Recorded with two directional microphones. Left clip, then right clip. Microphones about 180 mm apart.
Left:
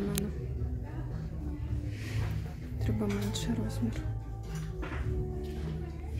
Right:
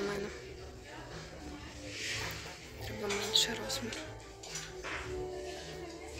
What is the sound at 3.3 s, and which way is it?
Speech, 15° left (ahead or behind).